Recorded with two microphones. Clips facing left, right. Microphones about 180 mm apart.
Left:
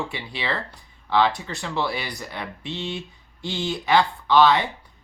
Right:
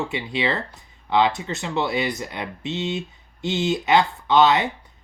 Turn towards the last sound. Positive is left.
turn(degrees=-20)  # may be behind; listen again after turning